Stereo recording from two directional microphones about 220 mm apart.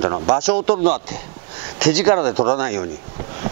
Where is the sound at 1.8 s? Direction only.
10° right (ahead or behind).